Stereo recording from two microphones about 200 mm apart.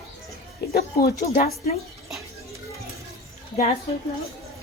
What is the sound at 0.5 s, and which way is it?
Music, 50° left (ahead or behind).